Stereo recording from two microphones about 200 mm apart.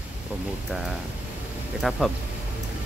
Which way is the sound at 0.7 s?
Centre (ahead or behind).